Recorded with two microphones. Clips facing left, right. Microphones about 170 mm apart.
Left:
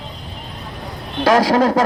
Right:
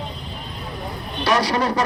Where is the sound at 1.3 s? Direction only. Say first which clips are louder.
Left 6 dB; 90° left.